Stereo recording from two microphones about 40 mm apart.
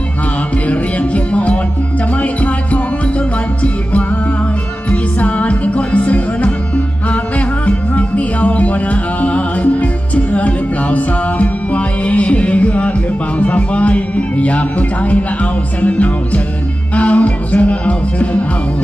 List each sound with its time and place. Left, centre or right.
0.7 s music: left